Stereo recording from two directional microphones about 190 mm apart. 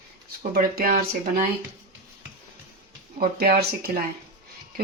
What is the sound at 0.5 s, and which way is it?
Speech, 50° right (ahead or behind).